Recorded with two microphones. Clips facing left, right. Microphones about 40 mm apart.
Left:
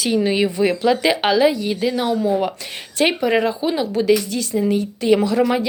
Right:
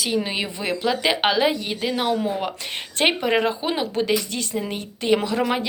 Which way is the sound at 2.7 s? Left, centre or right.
Right.